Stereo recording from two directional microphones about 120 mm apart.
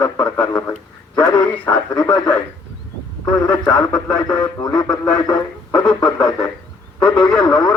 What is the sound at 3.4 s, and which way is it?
Speech, 30° left (ahead or behind).